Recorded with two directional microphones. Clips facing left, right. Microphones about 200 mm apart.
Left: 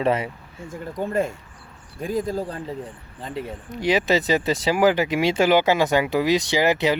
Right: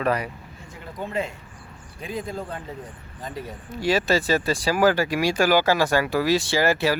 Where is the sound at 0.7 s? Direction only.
50° left (ahead or behind).